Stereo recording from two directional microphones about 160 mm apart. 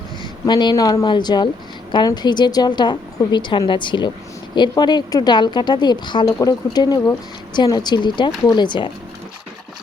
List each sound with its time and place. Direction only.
0.2 s speech: 30° left (ahead or behind)